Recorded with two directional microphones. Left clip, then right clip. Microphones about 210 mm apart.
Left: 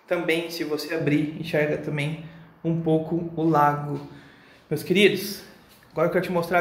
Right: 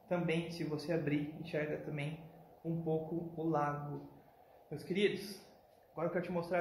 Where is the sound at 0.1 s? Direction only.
5° left (ahead or behind).